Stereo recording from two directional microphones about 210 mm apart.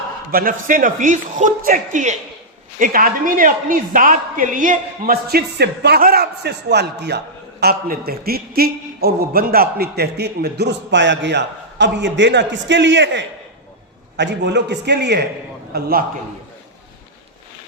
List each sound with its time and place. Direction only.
0.3 s a man's voice: 45° right (ahead or behind)